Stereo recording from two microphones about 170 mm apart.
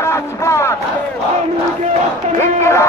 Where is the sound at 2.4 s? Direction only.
15° left (ahead or behind).